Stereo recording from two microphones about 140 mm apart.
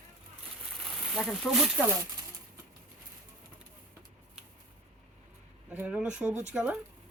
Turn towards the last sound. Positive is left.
turn(degrees=-10)  # may be behind; listen again after turning